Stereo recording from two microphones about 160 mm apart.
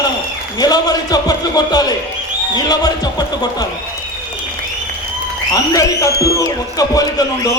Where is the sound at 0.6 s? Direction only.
25° left (ahead or behind).